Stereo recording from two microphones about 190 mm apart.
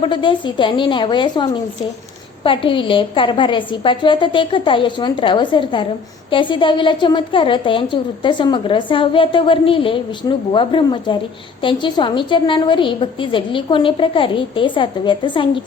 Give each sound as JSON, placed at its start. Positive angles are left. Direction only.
{"t": 0.0, "sound": "a woman's voice", "side_deg": 25}